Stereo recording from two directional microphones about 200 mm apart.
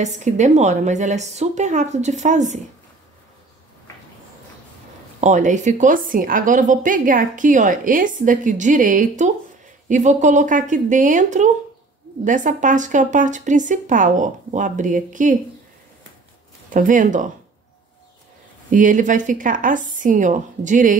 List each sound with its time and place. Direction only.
0.0 s a woman's voice: 35° right (ahead or behind)
5.2 s a woman's voice: 40° right (ahead or behind)
16.7 s a woman's voice: 40° right (ahead or behind)
18.7 s a woman's voice: 40° right (ahead or behind)